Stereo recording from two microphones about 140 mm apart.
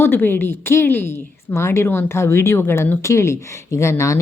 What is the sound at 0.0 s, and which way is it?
A woman's voice, 15° left (ahead or behind).